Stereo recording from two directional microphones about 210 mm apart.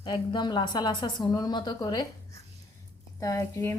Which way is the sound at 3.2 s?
15° left (ahead or behind).